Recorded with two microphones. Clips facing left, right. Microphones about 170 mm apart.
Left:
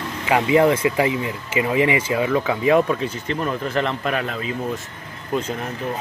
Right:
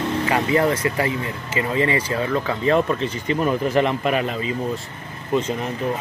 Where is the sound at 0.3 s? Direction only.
15° left (ahead or behind).